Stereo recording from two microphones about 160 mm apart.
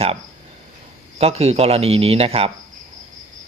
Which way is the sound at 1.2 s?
40° right (ahead or behind).